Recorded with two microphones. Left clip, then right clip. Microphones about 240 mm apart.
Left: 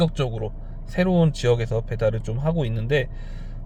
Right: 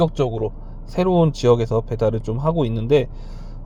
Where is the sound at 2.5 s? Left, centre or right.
Centre.